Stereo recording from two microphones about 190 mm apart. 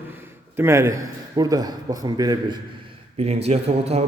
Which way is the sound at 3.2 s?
35° right (ahead or behind).